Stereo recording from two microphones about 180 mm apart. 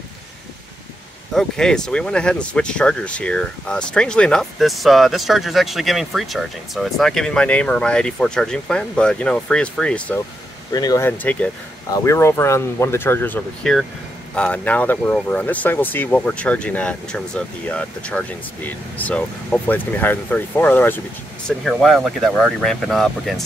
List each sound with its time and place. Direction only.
1.3 s speech: 5° left (ahead or behind)
10.7 s speech: 20° left (ahead or behind)
11.1 s speech: 5° left (ahead or behind)
21.5 s speech: centre (ahead or behind)